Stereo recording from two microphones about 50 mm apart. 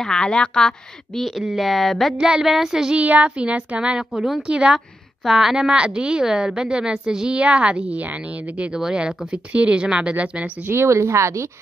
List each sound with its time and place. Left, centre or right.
0.0 s speech: centre
1.2 s speech: centre
2.1 s speech: centre
3.0 s a woman's voice: right
4.7 s a woman's voice: centre; by 10.5 s right
10.7 s a woman's voice: right